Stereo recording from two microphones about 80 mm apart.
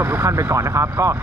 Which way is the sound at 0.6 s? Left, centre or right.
Right.